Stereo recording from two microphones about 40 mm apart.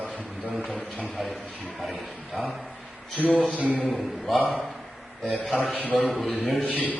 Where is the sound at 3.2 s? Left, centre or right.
Left.